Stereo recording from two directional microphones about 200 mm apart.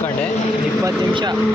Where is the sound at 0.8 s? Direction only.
20° right (ahead or behind).